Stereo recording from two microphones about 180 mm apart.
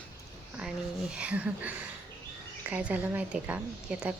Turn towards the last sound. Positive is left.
turn(degrees=-5)  # may be behind; listen again after turning